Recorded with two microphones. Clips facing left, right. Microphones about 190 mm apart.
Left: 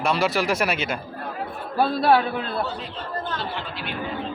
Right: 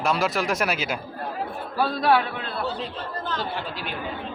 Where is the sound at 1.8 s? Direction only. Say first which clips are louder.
Left 2 dB; 30° left (ahead or behind).